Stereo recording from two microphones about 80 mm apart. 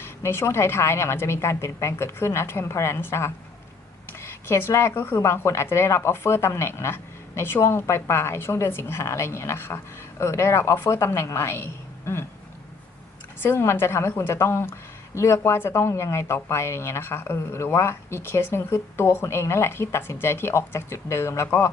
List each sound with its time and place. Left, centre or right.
0.0 s a woman's voice: left
4.4 s a woman's voice: left
13.4 s a woman's voice: left